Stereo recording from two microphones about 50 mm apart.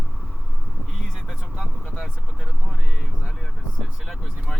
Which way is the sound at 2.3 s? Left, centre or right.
Right.